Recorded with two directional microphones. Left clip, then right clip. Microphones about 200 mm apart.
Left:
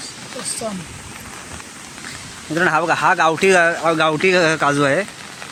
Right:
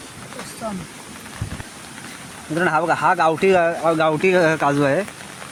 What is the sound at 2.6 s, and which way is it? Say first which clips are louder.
Speech: left 2 dB; 5° left (ahead or behind).